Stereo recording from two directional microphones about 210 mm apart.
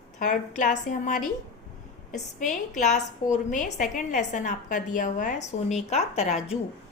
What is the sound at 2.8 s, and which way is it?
A woman's voice, 35° left (ahead or behind).